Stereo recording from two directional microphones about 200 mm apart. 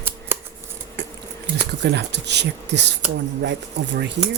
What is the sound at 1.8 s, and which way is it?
Speech, 60° right (ahead or behind).